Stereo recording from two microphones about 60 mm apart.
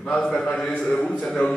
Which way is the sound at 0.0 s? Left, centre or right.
Centre.